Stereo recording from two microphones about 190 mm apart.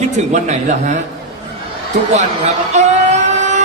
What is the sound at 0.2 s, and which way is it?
Speech, 35° right (ahead or behind).